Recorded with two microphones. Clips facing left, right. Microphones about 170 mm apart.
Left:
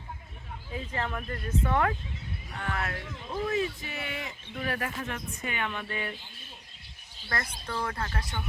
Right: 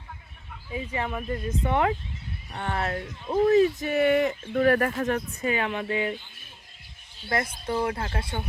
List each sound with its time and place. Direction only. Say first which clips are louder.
0.7 s speech: right 4 dB; 10° right (ahead or behind)
7.3 s speech: right 7 dB; 20° right (ahead or behind)